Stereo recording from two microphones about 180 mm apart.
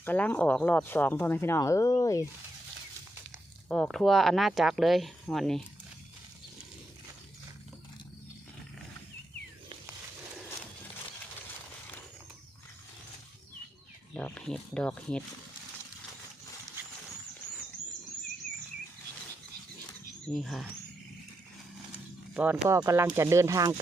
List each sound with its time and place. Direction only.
0.0 s speech: 10° left (ahead or behind)
3.7 s speech: centre (ahead or behind)
14.2 s speech: 5° left (ahead or behind)
20.2 s speech: 5° left (ahead or behind)
22.4 s speech: 10° right (ahead or behind)